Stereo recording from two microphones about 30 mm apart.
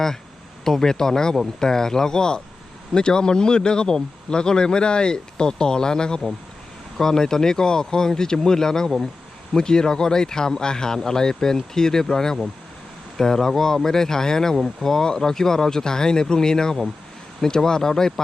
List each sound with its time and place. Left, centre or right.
0.6 s speech: centre